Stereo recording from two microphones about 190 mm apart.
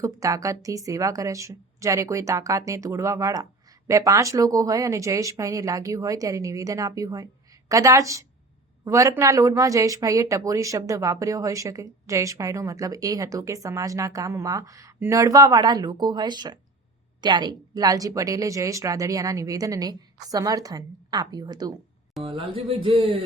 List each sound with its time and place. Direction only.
0.0 s a woman's voice: 15° right (ahead or behind)